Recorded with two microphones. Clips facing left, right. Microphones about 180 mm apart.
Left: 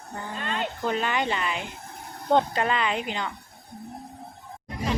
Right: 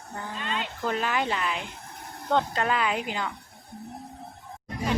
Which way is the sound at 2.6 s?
5° right (ahead or behind).